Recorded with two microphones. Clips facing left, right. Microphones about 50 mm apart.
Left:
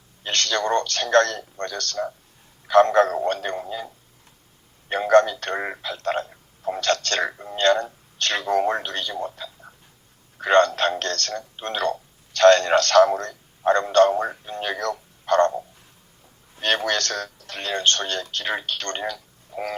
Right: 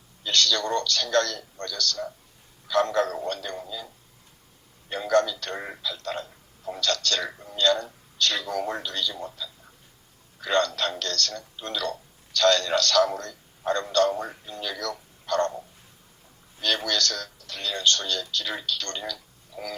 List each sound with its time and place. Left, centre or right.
0.2 s a man's voice: left